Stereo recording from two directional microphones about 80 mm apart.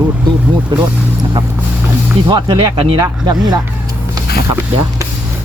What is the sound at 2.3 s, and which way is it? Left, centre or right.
Speech, right.